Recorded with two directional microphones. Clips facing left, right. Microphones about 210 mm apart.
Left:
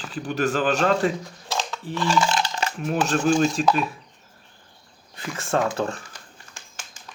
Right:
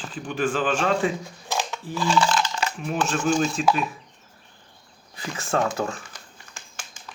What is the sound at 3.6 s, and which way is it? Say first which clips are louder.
Typing: left 1 dB; centre (ahead or behind).